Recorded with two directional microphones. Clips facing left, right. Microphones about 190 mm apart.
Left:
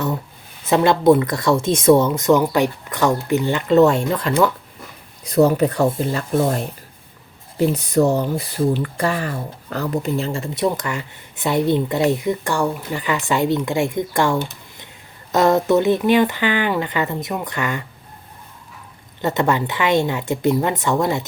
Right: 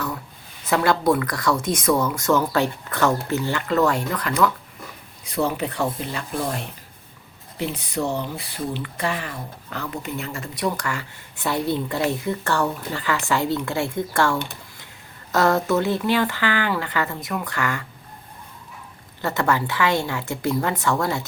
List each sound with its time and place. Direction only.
0.7 s speech: 20° left (ahead or behind)
5.2 s speech: 40° left (ahead or behind); by 17.8 s 20° left (ahead or behind)
19.2 s speech: 20° left (ahead or behind)